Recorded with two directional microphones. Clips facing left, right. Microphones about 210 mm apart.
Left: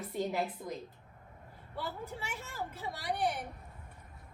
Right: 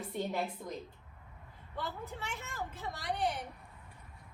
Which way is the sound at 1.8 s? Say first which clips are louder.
Left 1 dB; 10° left (ahead or behind).